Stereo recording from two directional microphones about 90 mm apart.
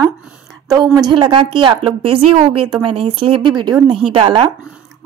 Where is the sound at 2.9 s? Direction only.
80° right; by 3.8 s 55° right (ahead or behind).